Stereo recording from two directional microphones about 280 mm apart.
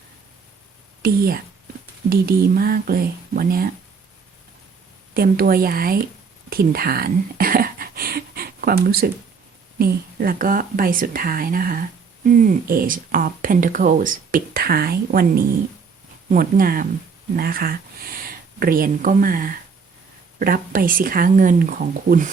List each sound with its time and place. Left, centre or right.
1.0 s speech: right
5.1 s speech: right
6.5 s a sound: right
9.7 s speech: right